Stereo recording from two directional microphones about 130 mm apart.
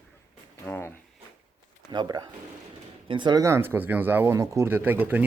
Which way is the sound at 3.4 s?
20° right (ahead or behind).